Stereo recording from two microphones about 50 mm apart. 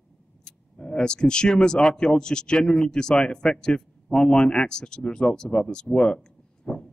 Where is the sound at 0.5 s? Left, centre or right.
Centre.